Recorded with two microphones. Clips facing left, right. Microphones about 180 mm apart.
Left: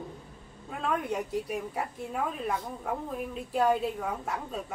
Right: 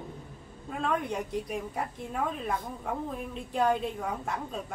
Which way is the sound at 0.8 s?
5° left (ahead or behind).